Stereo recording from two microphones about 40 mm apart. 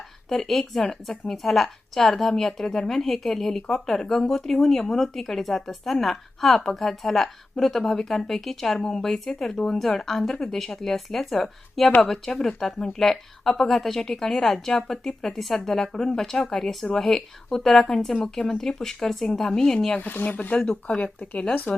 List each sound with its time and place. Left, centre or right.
0.3 s a woman's voice: centre
20.0 s speech: left
21.0 s speech: left